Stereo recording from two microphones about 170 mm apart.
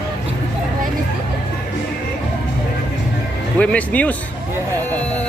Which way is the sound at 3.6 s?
10° left (ahead or behind).